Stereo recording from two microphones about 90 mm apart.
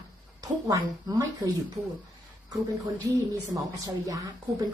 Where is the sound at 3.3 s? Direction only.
40° right (ahead or behind).